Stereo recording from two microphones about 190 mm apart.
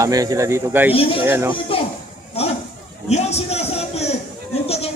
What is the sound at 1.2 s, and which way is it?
Speech, 10° right (ahead or behind).